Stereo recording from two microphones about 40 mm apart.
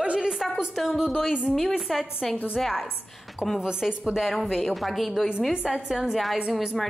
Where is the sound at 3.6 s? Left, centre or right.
Right.